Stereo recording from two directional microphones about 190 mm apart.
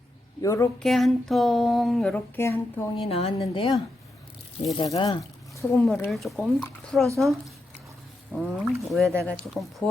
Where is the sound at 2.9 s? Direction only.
30° left (ahead or behind).